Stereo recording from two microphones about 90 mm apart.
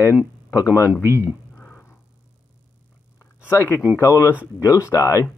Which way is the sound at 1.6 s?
20° left (ahead or behind).